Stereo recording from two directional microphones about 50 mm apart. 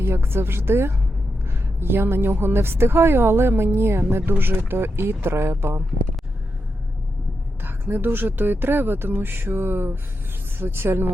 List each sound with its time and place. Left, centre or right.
0.0 s speech: right
7.6 s speech: right